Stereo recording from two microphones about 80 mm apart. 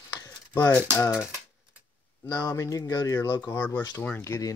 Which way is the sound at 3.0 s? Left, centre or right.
Left.